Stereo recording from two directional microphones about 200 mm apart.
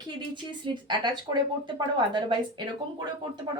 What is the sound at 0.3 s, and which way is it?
A woman's voice, 25° right (ahead or behind).